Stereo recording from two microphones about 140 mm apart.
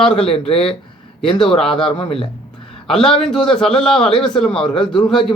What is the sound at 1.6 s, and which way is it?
Speech, 5° left (ahead or behind).